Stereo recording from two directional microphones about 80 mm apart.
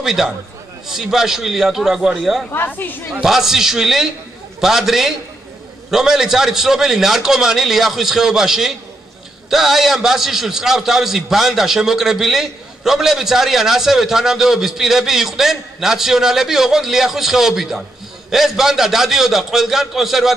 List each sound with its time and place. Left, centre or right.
0.0 s a man's voice: centre
2.5 s speech: left
3.1 s a man's voice: centre